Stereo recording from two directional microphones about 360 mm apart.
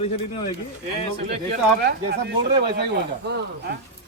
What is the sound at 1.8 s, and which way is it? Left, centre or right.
Speech, right.